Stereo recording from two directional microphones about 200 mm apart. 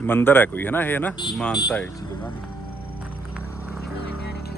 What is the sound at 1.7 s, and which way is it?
Vehicle, 10° left (ahead or behind).